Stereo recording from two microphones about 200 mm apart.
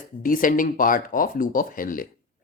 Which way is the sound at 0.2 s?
45° left (ahead or behind).